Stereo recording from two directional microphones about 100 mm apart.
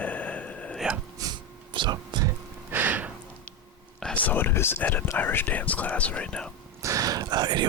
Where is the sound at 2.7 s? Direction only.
20° right (ahead or behind).